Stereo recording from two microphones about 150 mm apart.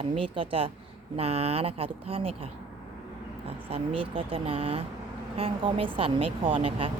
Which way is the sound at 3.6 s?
40° right (ahead or behind).